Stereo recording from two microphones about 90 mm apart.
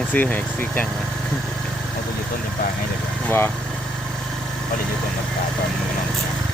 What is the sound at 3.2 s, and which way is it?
Speech, 25° left (ahead or behind).